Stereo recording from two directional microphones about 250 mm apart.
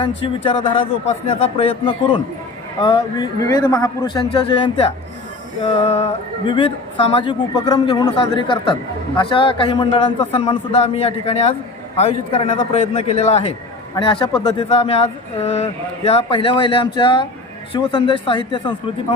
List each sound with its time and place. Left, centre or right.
0.0 s a man's voice: centre